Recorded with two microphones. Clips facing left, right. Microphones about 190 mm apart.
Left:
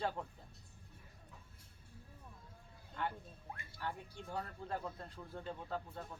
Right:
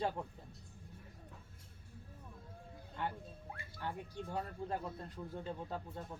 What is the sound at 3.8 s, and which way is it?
Speech, 20° right (ahead or behind).